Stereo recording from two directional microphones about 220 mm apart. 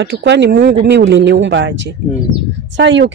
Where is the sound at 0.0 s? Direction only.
50° right (ahead or behind).